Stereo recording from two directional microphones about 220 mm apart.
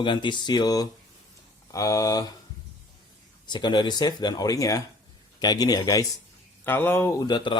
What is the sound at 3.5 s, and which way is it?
A man's voice, 20° left (ahead or behind).